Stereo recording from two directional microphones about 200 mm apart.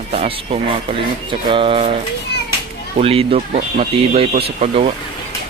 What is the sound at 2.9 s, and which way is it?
Speech, 30° right (ahead or behind).